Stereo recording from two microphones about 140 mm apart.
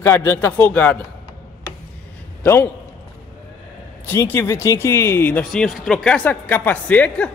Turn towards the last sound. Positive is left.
turn(degrees=10)  # may be behind; listen again after turning